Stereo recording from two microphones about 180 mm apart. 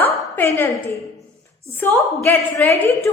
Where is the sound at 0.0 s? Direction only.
10° left (ahead or behind).